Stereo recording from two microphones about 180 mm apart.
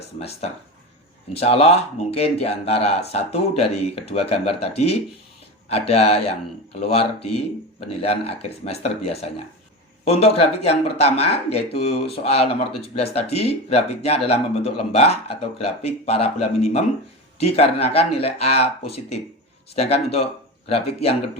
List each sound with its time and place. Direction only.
1.4 s speech: 35° left (ahead or behind)